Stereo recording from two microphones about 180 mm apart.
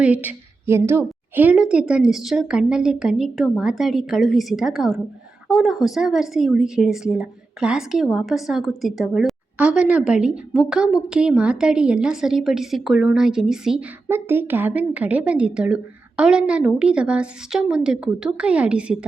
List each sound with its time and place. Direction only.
0.0 s speech: 10° right (ahead or behind)